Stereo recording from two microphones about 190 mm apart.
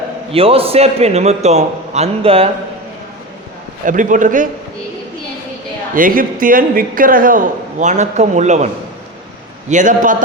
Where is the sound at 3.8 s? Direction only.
40° right (ahead or behind).